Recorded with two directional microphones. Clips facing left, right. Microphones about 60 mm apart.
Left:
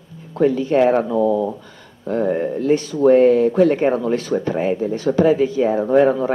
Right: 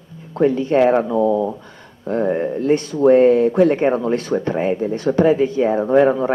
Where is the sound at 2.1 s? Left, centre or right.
Right.